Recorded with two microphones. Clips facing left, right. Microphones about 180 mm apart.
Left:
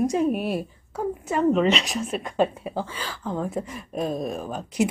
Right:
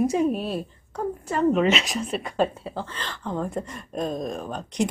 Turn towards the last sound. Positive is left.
turn(degrees=5)  # may be behind; listen again after turning